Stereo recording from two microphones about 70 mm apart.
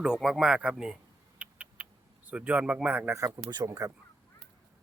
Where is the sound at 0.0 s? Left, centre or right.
Centre.